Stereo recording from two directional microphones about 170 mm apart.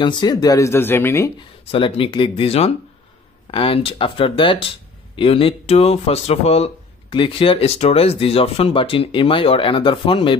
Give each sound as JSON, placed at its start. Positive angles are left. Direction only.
{"t": 0.0, "sound": "speech", "side_deg": 25}
{"t": 1.7, "sound": "speech", "side_deg": 30}